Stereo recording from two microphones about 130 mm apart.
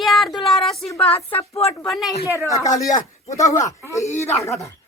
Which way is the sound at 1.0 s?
50° left (ahead or behind).